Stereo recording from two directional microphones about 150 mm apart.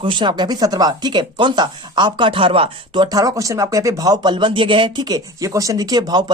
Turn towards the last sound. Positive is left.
turn(degrees=-30)  # may be behind; listen again after turning